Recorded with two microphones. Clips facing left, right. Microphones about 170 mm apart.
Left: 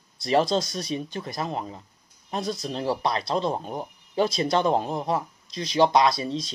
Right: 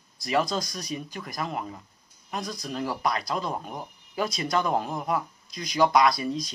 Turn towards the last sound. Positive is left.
turn(degrees=25)  # may be behind; listen again after turning